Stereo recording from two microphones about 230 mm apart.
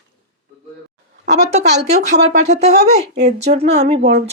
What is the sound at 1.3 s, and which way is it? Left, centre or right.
A woman's voice, right.